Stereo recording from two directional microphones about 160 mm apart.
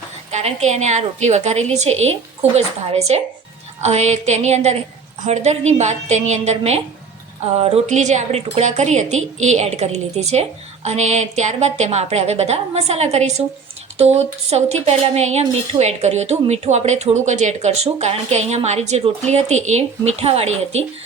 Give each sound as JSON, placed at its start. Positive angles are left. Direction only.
{"t": 0.3, "sound": "a woman's voice", "side_deg": -45}